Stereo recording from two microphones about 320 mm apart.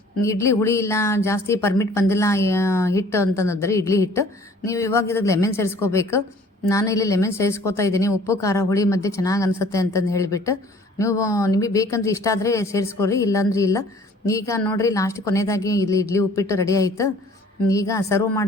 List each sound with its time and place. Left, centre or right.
0.2 s speech: centre